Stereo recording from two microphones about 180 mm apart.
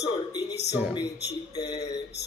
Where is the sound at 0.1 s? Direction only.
20° left (ahead or behind).